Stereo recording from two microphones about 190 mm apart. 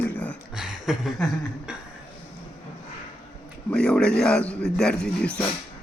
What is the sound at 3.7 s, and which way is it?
Speech, 5° left (ahead or behind).